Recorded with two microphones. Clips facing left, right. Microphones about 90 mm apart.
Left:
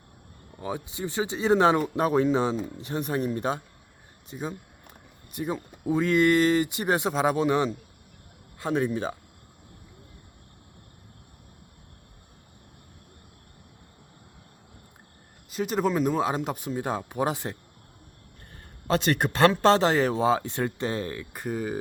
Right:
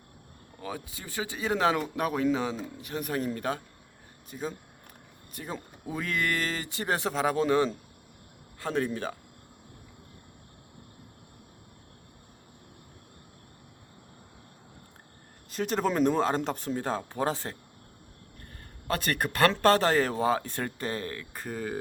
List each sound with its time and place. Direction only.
0.6 s speech: 25° left (ahead or behind)
15.4 s speech: 5° left (ahead or behind)
18.9 s speech: 25° left (ahead or behind)